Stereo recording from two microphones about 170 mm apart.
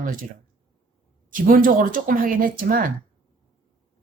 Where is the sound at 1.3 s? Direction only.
55° right (ahead or behind).